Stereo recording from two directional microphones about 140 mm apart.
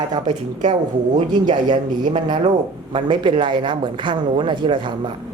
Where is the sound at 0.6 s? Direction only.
60° right (ahead or behind).